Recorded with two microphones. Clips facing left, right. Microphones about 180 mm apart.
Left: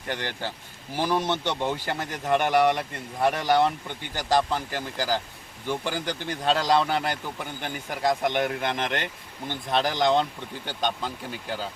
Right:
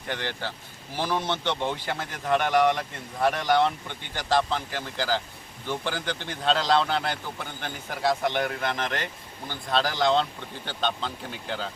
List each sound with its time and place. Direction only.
0.9 s speech: 10° left (ahead or behind)